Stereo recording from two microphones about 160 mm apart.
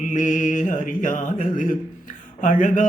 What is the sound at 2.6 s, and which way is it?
Mantra, 50° left (ahead or behind).